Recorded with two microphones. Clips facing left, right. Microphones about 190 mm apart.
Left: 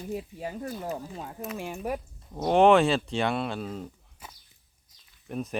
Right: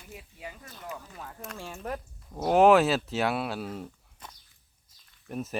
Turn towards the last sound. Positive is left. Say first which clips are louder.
# left 2 dB
turn(degrees=-5)  # may be behind; listen again after turning